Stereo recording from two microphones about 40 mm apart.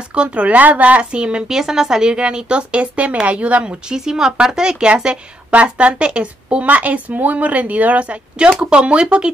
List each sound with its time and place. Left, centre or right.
0.1 s speech: right
1.1 s a woman's voice: right
1.5 s a woman's voice: centre
2.1 s a woman's voice: right
3.9 s a woman's voice: centre
5.5 s speech: right
6.7 s a woman's voice: right